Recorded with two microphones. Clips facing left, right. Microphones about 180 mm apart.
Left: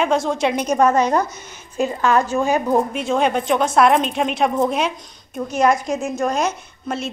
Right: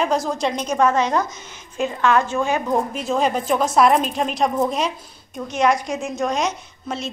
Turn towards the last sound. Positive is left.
turn(degrees=0)  # may be behind; listen again after turning